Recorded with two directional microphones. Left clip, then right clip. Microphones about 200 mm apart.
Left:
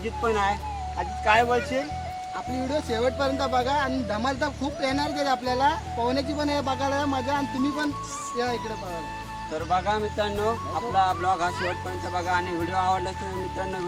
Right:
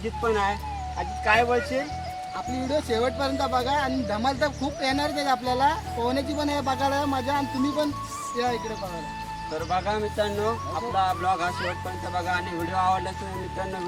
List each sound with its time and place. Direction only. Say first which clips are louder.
0.0 s speech: even; centre (ahead or behind)
2.6 s speech: right 1 dB; 15° right (ahead or behind)
9.6 s speech: left 2 dB; centre (ahead or behind)